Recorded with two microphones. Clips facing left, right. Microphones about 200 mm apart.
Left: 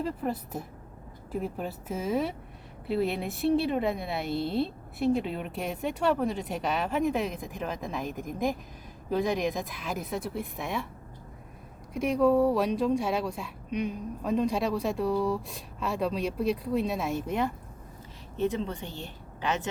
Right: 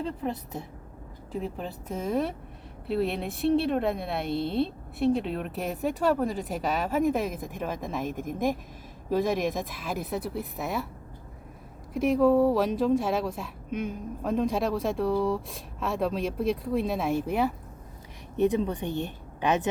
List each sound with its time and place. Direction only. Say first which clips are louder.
0.0 s a woman's voice: even; 5° left (ahead or behind)
11.9 s a woman's voice: right 2 dB; centre (ahead or behind); by 19.6 s 15° right (ahead or behind)